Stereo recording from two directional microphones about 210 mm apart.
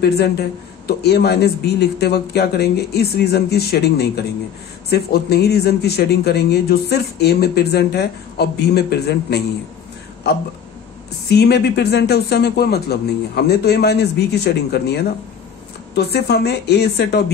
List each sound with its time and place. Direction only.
0.0 s speech: 50° left (ahead or behind)
11.2 s speech: 50° left (ahead or behind)